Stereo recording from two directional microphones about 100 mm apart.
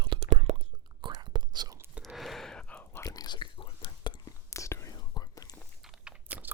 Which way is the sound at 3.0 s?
35° left (ahead or behind).